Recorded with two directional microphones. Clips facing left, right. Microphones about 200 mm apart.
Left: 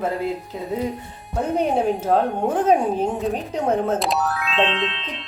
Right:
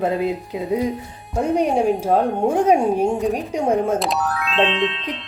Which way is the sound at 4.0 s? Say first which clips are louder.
Even; centre (ahead or behind).